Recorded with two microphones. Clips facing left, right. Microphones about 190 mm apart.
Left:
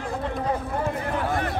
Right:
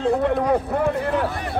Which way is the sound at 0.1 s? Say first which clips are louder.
Right 6 dB; 65° right (ahead or behind).